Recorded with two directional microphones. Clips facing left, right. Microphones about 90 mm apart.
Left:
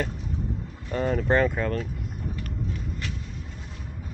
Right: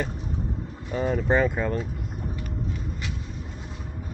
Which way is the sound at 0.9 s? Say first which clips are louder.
Even; 5° right (ahead or behind).